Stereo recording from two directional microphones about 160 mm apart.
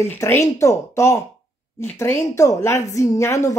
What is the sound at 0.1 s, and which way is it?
A woman's voice, 15° left (ahead or behind).